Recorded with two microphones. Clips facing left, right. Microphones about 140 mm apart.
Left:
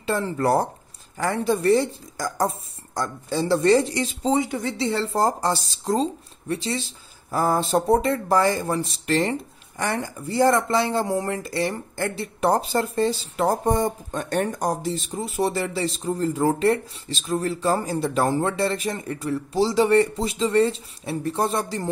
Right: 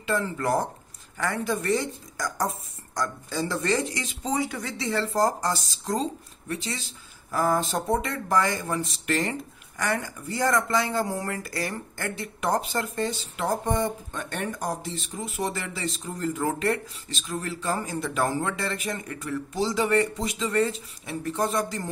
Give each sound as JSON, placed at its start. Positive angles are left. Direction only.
{"t": 0.0, "sound": "speech", "side_deg": 35}